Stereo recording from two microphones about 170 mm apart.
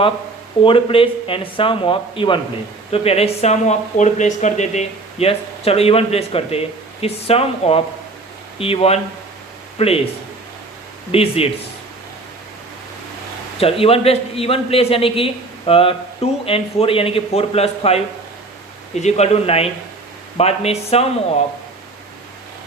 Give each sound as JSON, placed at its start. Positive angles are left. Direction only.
{"t": 0.6, "sound": "speech", "side_deg": 30}
{"t": 11.1, "sound": "speech", "side_deg": 35}
{"t": 13.6, "sound": "speech", "side_deg": 35}